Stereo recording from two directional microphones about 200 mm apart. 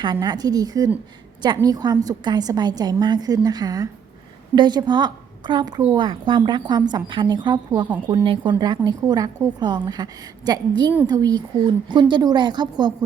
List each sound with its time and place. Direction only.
0.0 s a woman's voice: 20° right (ahead or behind)